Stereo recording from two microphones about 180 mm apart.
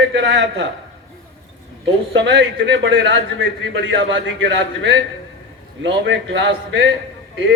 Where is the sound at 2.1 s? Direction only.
80° right.